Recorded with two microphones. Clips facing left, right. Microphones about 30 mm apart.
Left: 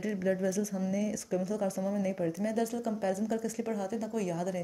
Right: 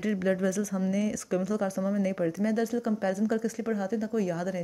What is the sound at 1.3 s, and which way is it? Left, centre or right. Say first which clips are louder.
Speech: right 4 dB; right.